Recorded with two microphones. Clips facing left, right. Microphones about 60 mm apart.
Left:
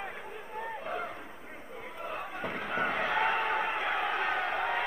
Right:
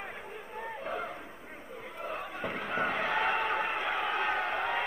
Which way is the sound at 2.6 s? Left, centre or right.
Left.